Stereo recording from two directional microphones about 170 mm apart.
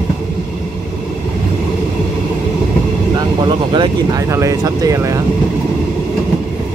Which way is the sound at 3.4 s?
30° right (ahead or behind).